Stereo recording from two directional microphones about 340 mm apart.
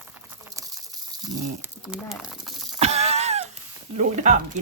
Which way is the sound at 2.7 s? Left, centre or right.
Centre.